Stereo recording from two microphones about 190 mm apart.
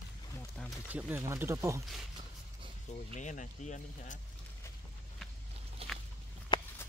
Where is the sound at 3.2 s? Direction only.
40° left (ahead or behind).